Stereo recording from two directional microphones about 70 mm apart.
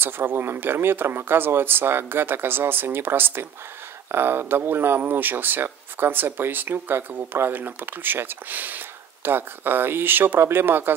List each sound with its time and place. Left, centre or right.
0.0 s speech: right